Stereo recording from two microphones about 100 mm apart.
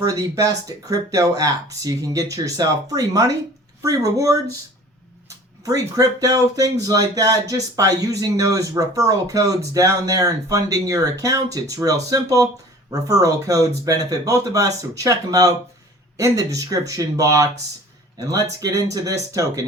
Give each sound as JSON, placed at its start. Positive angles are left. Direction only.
{"t": 0.0, "sound": "speech", "side_deg": -35}
{"t": 6.0, "sound": "speech", "side_deg": -35}